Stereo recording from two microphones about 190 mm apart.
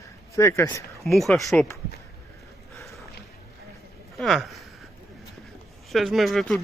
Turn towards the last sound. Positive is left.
turn(degrees=0)  # may be behind; listen again after turning